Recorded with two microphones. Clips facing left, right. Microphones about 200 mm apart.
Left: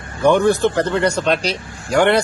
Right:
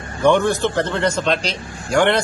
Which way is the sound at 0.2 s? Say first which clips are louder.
Left 2 dB; 10° left (ahead or behind).